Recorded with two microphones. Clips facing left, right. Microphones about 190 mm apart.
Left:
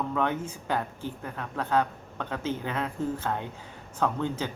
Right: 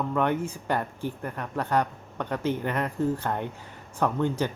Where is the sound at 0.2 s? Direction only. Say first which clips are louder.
Right 5 dB; 15° right (ahead or behind).